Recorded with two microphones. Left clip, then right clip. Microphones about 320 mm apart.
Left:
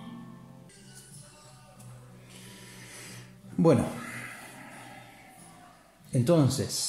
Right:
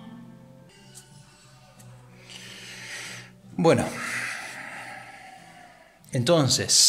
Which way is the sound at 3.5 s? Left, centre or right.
Right.